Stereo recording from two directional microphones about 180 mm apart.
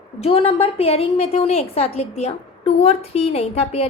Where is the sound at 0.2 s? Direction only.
30° left (ahead or behind).